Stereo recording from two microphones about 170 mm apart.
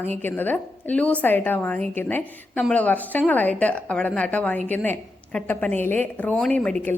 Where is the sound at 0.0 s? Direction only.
10° left (ahead or behind).